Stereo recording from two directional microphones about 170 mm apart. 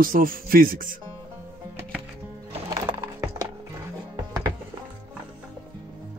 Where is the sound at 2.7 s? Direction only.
20° right (ahead or behind).